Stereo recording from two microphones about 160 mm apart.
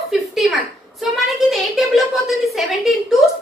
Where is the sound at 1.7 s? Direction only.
Centre (ahead or behind).